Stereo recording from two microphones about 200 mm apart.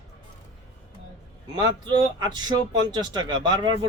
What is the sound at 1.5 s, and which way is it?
Speech, 20° right (ahead or behind).